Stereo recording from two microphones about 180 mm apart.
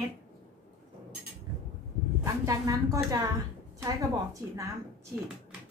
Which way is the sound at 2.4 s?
20° right (ahead or behind).